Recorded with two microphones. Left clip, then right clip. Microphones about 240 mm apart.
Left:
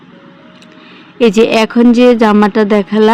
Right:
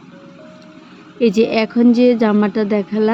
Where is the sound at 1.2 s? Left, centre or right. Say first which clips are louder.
Left 6 dB; left.